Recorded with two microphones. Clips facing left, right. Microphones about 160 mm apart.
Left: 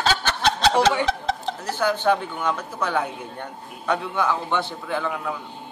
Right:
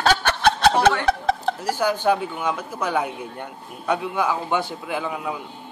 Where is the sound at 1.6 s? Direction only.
10° right (ahead or behind).